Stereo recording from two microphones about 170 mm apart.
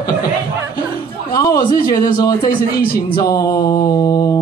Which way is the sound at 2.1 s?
60° left (ahead or behind).